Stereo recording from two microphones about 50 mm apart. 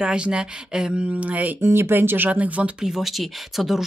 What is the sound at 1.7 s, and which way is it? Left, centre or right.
Speech, right.